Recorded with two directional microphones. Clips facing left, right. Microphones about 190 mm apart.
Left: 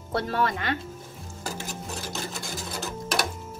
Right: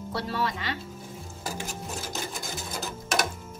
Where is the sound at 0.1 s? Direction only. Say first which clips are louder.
Left 4 dB; 55° left (ahead or behind).